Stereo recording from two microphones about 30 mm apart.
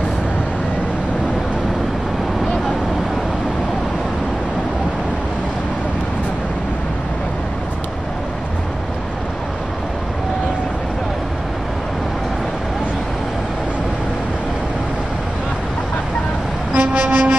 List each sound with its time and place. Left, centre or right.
16.7 s vehicle: right